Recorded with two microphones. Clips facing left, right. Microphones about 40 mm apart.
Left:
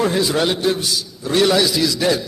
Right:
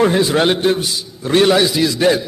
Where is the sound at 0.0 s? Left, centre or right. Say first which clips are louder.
Right 4 dB; right.